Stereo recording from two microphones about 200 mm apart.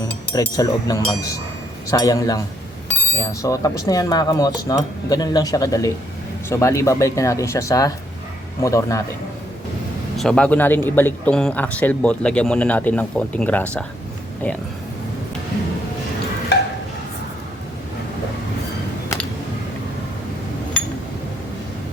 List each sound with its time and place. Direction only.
0.3 s speech: 20° left (ahead or behind)
3.4 s speech: 15° left (ahead or behind)
10.2 s speech: 5° left (ahead or behind)
16.5 s a sound: 55° left (ahead or behind)